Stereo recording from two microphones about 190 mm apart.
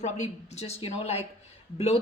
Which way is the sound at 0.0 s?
35° left (ahead or behind).